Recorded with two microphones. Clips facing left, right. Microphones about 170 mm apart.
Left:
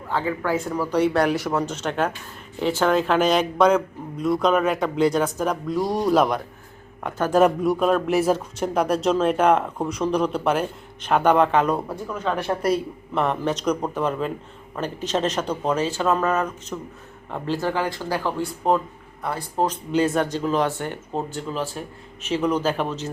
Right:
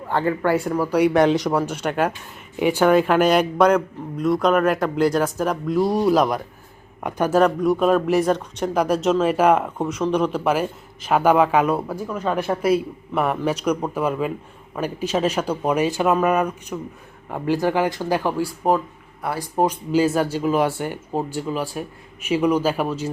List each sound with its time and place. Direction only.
0.1 s speech: 60° right (ahead or behind)
0.4 s a man's voice: 10° right (ahead or behind)
7.0 s speech: 15° right (ahead or behind)
7.3 s a man's voice: centre (ahead or behind)